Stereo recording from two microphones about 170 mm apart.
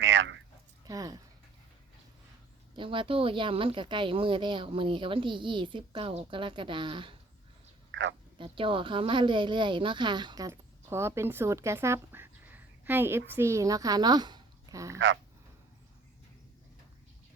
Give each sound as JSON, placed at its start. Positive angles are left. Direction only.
{"t": 0.0, "sound": "a sound", "side_deg": -90}
{"t": 0.9, "sound": "speech", "side_deg": -20}
{"t": 2.7, "sound": "a woman's voice", "side_deg": -30}
{"t": 7.9, "sound": "a sound", "side_deg": -90}
{"t": 8.4, "sound": "speech", "side_deg": -30}
{"t": 14.9, "sound": "speech", "side_deg": -90}